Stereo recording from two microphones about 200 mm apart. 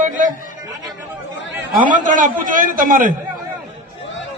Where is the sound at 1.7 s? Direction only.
40° right (ahead or behind).